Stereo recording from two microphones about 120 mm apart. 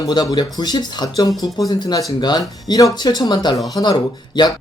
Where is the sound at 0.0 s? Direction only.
35° left (ahead or behind).